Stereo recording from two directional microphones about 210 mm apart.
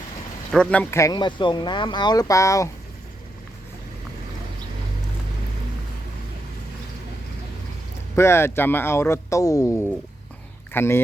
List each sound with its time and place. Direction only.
0.5 s speech: 5° left (ahead or behind)
8.1 s speech: 10° left (ahead or behind)